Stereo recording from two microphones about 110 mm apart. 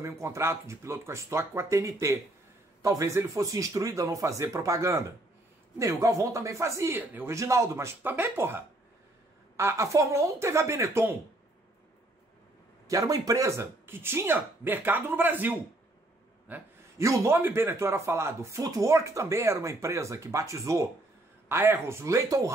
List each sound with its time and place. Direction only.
0.0 s speech: 25° right (ahead or behind)
12.8 s a man's voice: 30° right (ahead or behind); by 16.6 s 15° right (ahead or behind)
17.0 s speech: 25° right (ahead or behind)